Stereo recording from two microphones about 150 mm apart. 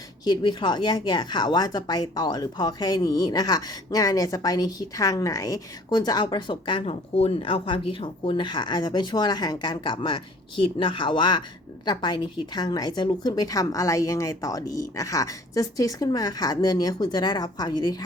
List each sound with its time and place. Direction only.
0.3 s speech: 30° left (ahead or behind)